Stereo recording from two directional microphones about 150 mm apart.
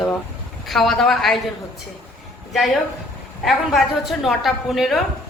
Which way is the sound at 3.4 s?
Centre (ahead or behind).